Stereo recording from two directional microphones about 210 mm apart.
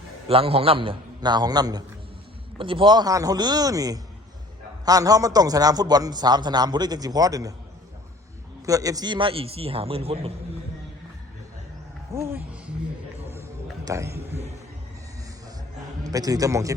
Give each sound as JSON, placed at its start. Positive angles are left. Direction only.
{"t": 0.3, "sound": "a man's voice", "side_deg": -25}
{"t": 8.6, "sound": "a man's voice", "side_deg": -15}
{"t": 12.1, "sound": "music", "side_deg": -10}
{"t": 13.8, "sound": "a sound", "side_deg": -15}
{"t": 16.0, "sound": "a man's voice", "side_deg": -15}